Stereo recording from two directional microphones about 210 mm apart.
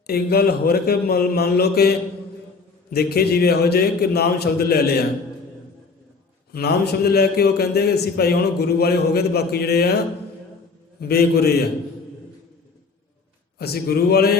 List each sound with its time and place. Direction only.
0.1 s a man's voice: 50° left (ahead or behind)
6.5 s a man's voice: 50° left (ahead or behind)
11.0 s a man's voice: 50° left (ahead or behind)
13.6 s a man's voice: 50° left (ahead or behind)